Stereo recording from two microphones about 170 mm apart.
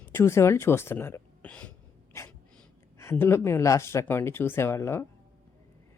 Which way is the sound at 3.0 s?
15° left (ahead or behind).